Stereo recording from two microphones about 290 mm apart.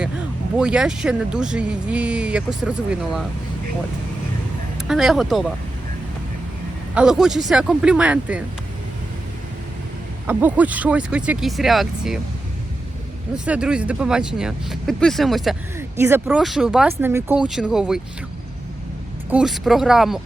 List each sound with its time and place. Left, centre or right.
0.5 s speech: centre
4.9 s speech: centre
6.9 s speech: centre
10.2 s speech: centre
13.3 s speech: centre
19.3 s speech: centre